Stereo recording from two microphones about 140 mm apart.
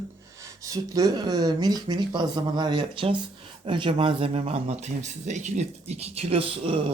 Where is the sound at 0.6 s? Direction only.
25° right (ahead or behind).